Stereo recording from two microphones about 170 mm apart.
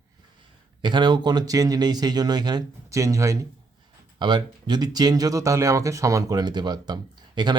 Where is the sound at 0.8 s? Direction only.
25° right (ahead or behind).